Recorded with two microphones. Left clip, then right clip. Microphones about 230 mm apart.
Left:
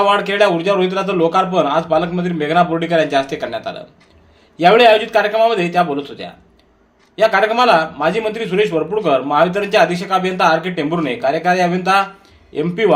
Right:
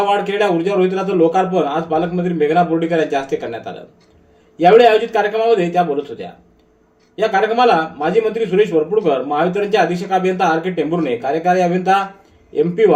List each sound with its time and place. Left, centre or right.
0.0 s a man's voice: left